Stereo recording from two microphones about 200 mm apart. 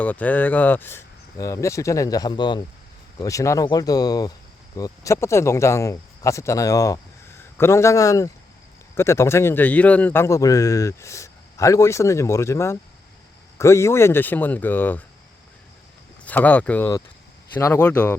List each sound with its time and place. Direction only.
0.0 s a man's voice: 5° left (ahead or behind)
16.2 s a man's voice: 10° left (ahead or behind)